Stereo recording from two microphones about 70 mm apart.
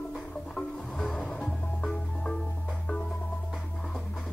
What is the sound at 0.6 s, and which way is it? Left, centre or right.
Music, centre.